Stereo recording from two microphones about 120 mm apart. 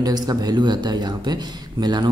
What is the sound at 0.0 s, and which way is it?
Speech, 35° right (ahead or behind).